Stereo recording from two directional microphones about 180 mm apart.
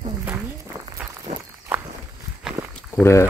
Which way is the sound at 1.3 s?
40° right (ahead or behind).